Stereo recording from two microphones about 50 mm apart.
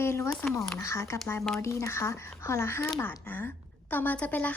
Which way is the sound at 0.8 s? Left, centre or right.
Left.